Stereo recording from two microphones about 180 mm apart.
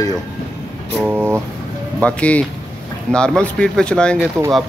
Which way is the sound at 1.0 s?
10° right (ahead or behind).